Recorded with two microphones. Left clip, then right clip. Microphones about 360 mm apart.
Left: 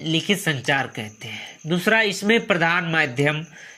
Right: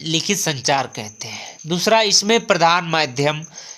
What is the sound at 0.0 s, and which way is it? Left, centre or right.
Speech, centre.